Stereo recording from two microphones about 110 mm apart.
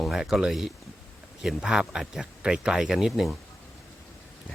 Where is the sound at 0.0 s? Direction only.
5° right (ahead or behind).